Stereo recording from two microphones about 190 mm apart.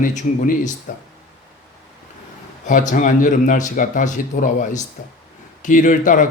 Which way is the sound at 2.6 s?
45° left (ahead or behind).